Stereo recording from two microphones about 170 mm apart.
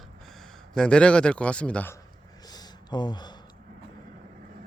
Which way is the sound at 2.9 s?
25° left (ahead or behind).